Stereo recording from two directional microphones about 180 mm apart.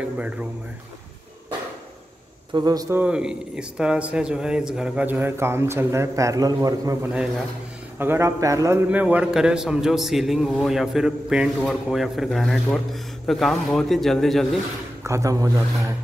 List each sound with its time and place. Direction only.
2.5 s a man's voice: 20° right (ahead or behind)
3.0 s a man's voice: 5° right (ahead or behind)
15.0 s a man's voice: 15° right (ahead or behind)